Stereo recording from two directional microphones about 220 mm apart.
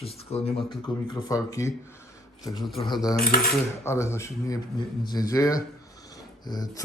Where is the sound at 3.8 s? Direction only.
10° left (ahead or behind).